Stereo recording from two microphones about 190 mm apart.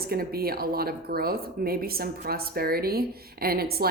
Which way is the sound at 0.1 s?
55° right (ahead or behind).